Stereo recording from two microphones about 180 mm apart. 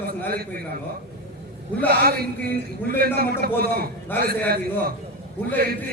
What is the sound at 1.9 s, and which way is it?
A man's voice, 60° right (ahead or behind).